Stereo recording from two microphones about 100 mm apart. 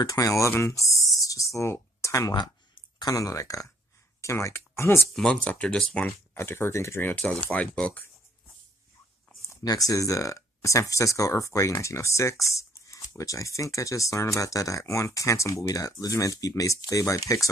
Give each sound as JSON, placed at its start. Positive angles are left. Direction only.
{"t": 0.0, "sound": "speech", "side_deg": 35}
{"t": 0.8, "sound": "a sound", "side_deg": 30}
{"t": 2.3, "sound": "speech", "side_deg": 45}
{"t": 5.1, "sound": "speech", "side_deg": 5}
{"t": 6.0, "sound": "speech", "side_deg": 25}
{"t": 7.1, "sound": "speech", "side_deg": 10}
{"t": 9.5, "sound": "speech", "side_deg": 35}